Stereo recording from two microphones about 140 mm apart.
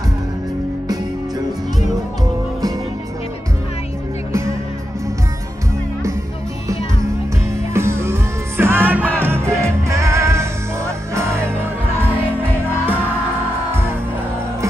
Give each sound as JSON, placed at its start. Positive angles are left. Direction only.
{"t": 4.3, "sound": "music", "side_deg": -20}
{"t": 7.7, "sound": "music", "side_deg": -20}